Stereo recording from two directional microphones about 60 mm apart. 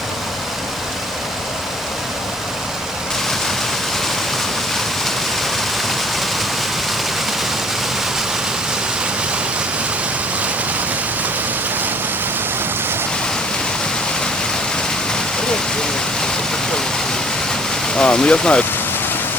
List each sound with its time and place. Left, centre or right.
17.9 s speech: centre